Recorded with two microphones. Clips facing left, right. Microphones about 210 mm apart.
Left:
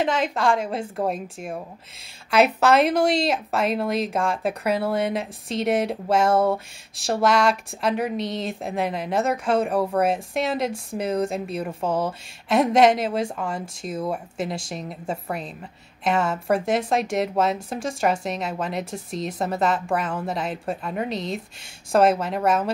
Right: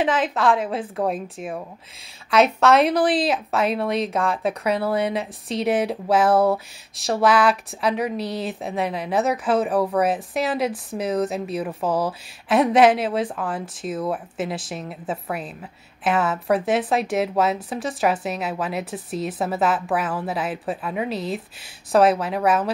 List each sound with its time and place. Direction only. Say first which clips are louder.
0.0 s speech: right 2 dB; centre (ahead or behind)